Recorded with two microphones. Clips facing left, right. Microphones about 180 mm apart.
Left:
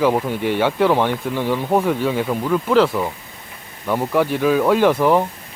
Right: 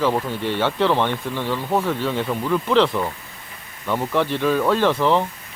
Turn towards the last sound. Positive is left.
turn(degrees=10)  # may be behind; listen again after turning